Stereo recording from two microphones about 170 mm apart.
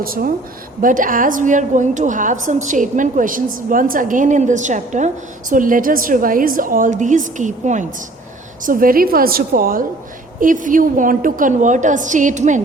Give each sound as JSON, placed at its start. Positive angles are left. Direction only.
{"t": 0.0, "sound": "a woman's voice", "side_deg": -60}